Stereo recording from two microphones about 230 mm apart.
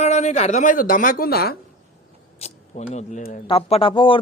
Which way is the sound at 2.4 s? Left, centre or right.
Left.